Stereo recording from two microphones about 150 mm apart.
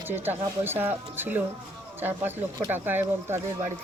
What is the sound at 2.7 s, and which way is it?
Speech, 15° right (ahead or behind).